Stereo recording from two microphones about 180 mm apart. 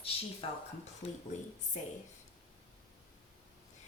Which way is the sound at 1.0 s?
35° left (ahead or behind).